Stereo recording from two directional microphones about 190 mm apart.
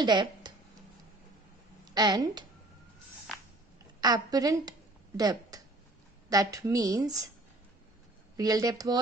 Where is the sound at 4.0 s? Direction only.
20° right (ahead or behind).